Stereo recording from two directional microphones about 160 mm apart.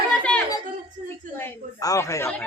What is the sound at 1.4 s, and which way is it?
Speech, 20° left (ahead or behind).